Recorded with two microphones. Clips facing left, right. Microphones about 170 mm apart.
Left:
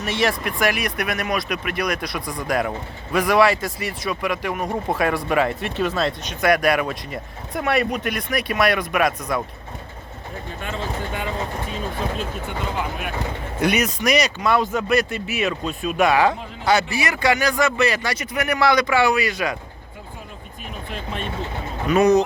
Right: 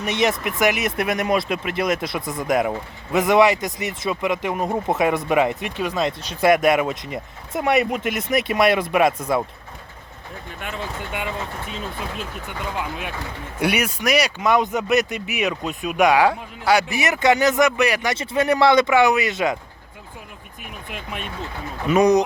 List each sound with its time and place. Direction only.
0.0 s speech: 20° right (ahead or behind)
13.6 s speech: 10° right (ahead or behind)
16.9 s speech: 20° right (ahead or behind)
18.2 s speech: 25° right (ahead or behind)
20.9 s speech: 10° right (ahead or behind)